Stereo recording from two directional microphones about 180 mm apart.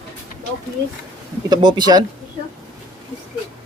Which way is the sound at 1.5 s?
25° right (ahead or behind).